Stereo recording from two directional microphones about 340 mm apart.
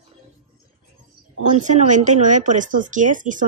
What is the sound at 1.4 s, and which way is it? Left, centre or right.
Speech, right.